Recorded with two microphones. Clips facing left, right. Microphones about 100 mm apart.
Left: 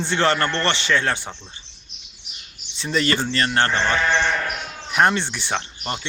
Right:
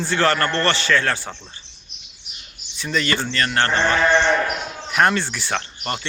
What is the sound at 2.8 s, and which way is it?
Speech, 30° left (ahead or behind).